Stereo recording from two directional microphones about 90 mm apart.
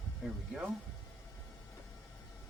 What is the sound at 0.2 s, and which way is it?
Speech, 5° right (ahead or behind).